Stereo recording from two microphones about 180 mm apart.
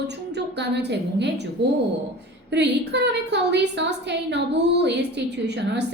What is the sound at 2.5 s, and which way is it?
A woman's voice, 70° right (ahead or behind).